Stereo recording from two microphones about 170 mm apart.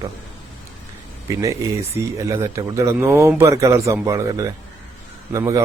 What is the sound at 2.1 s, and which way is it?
A man's voice, 20° right (ahead or behind).